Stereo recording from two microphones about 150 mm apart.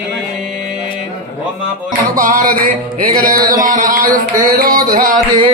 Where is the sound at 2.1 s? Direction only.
65° right (ahead or behind).